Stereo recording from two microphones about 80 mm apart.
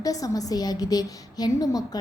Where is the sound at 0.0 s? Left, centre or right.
Left.